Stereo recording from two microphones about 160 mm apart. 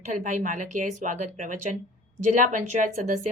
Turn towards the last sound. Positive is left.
turn(degrees=-50)  # may be behind; listen again after turning